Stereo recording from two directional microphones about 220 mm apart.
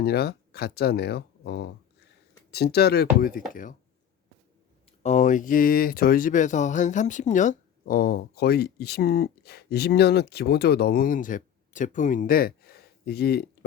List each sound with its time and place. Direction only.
0.0 s speech: 45° left (ahead or behind)
5.0 s speech: 35° left (ahead or behind)